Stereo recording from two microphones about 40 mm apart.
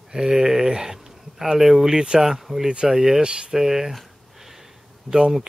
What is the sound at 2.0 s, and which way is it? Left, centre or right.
Speech, right.